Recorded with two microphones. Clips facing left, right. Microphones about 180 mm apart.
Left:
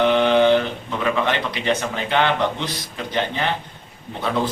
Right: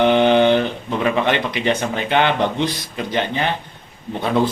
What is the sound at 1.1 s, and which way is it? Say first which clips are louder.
A man's voice: right 3 dB; 20° right (ahead or behind).